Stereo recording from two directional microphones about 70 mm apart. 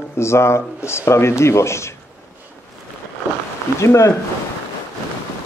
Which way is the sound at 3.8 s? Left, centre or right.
Left.